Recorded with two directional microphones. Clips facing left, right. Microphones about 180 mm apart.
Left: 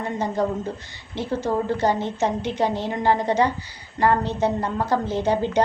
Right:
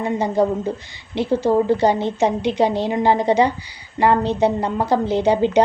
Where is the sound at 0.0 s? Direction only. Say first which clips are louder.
Right 5 dB; 10° right (ahead or behind).